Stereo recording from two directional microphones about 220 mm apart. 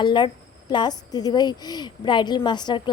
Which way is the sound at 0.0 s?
20° left (ahead or behind).